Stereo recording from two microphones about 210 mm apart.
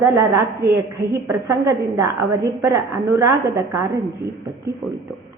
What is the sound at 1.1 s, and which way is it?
A woman's voice, 15° right (ahead or behind).